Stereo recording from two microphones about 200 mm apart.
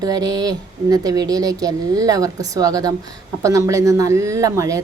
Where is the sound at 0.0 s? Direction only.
20° right (ahead or behind).